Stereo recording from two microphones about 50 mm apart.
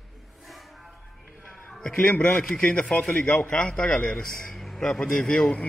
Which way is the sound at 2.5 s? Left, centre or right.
Left.